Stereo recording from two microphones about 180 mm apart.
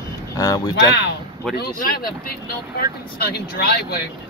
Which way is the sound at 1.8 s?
55° left (ahead or behind).